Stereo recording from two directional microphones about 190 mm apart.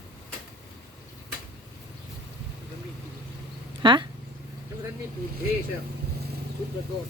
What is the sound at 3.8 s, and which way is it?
Speech, 25° right (ahead or behind).